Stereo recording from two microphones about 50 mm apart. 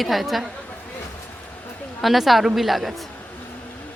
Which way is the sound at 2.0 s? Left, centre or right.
Centre.